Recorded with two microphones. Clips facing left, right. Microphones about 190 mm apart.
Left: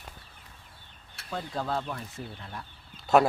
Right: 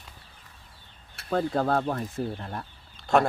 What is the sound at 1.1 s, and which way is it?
Speech, 55° right (ahead or behind).